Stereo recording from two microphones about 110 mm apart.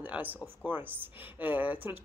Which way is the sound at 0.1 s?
15° right (ahead or behind).